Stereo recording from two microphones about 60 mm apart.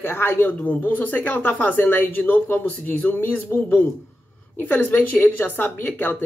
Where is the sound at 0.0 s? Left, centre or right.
Left.